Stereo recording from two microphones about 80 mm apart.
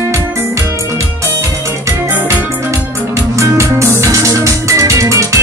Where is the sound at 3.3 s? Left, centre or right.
Right.